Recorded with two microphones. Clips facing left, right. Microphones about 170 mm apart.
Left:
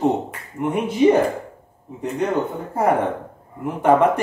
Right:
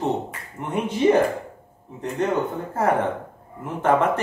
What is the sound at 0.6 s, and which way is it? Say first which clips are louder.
Speech: left 9 dB; 10° left (ahead or behind).